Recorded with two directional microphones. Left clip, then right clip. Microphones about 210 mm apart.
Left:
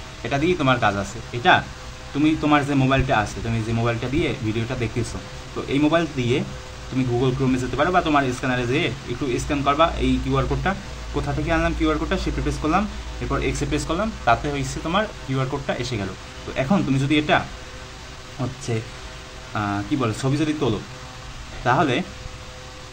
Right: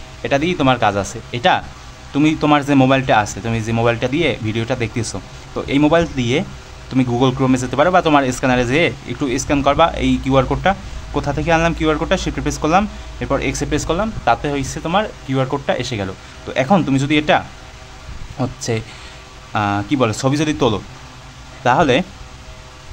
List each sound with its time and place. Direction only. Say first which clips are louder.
0.2 s speech: right 5 dB; 35° right (ahead or behind)
18.4 s speech: right 7 dB; 35° right (ahead or behind)